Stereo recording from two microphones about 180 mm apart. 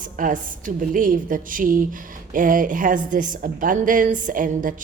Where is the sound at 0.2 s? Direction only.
45° right (ahead or behind).